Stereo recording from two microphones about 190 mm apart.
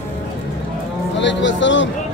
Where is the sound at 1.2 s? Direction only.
70° left (ahead or behind).